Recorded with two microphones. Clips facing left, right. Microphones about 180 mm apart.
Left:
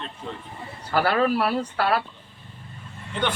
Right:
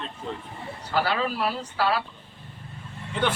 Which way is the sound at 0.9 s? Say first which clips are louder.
Left 5 dB; 55° left (ahead or behind).